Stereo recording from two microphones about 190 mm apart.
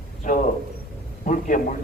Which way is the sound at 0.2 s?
40° left (ahead or behind).